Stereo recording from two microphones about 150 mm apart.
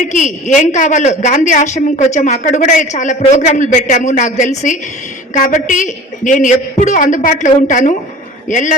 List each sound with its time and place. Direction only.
0.0 s a man's voice: 55° left (ahead or behind)